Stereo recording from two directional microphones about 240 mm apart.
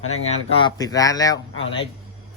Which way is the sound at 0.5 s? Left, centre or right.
Centre.